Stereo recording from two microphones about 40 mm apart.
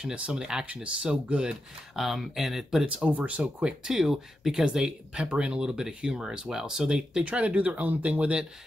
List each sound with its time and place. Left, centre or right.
0.0 s speech: right
0.8 s speech: right
1.5 s speech: centre
3.1 s speech: right
3.6 s speech: centre
5.1 s speech: right
7.2 s speech: right